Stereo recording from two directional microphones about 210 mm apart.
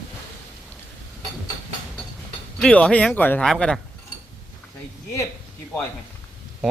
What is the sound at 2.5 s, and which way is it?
Speech, 5° left (ahead or behind).